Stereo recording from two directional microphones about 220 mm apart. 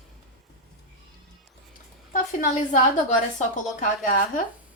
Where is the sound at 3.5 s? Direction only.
35° left (ahead or behind).